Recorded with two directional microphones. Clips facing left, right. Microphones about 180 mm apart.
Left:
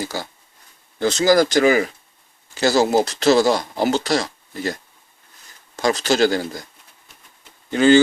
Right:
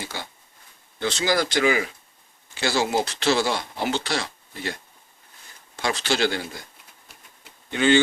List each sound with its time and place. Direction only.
0.0 s speech: 40° left (ahead or behind)
7.7 s speech: 40° left (ahead or behind)